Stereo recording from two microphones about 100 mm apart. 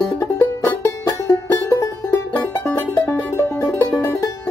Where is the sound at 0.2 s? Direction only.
30° left (ahead or behind).